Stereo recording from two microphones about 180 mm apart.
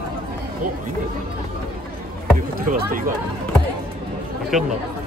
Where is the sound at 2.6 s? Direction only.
50° right (ahead or behind).